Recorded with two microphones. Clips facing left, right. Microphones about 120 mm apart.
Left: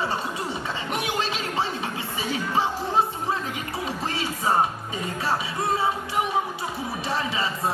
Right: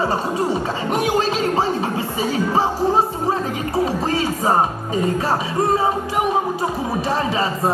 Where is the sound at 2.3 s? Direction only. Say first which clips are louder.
Right 6 dB; 40° right (ahead or behind).